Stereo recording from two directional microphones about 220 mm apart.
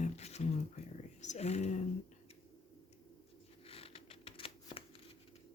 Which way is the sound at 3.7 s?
25° left (ahead or behind).